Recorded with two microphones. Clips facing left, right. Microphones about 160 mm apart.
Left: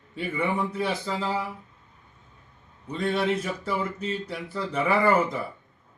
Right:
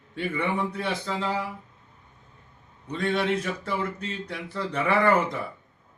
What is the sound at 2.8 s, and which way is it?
A man's voice, 5° left (ahead or behind).